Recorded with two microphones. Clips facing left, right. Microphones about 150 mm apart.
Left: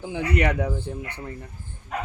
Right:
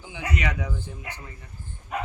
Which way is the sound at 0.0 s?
60° left (ahead or behind).